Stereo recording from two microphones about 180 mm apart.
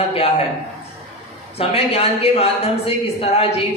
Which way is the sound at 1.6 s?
35° left (ahead or behind).